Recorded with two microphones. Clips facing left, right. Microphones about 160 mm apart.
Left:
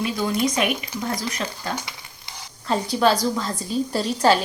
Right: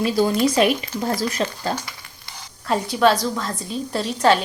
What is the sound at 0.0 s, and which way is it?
Speech, 30° right (ahead or behind).